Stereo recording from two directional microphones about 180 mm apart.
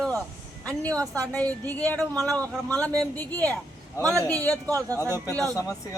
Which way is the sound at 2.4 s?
5° left (ahead or behind).